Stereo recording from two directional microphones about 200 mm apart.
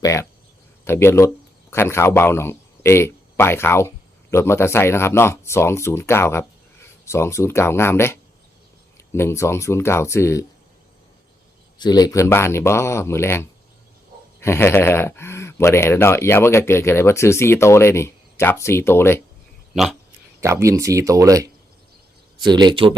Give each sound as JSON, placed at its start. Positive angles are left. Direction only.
{"t": 0.0, "sound": "speech", "side_deg": 15}
{"t": 11.8, "sound": "speech", "side_deg": 20}
{"t": 19.7, "sound": "speech", "side_deg": 0}
{"t": 20.4, "sound": "speech", "side_deg": -15}